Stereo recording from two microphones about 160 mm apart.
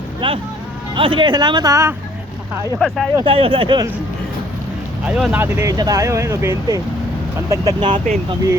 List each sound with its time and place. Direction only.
0.2 s vehicle: 30° right (ahead or behind)
0.9 s speech: 30° right (ahead or behind)
2.7 s speech: centre (ahead or behind)
3.2 s speech: 35° right (ahead or behind)
5.0 s speech: 5° right (ahead or behind)
5.4 s speech: 20° right (ahead or behind)